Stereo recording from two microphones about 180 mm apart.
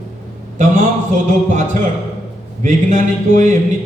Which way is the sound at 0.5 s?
45° right (ahead or behind).